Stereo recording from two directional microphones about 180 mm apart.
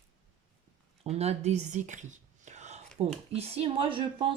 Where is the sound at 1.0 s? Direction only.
35° right (ahead or behind).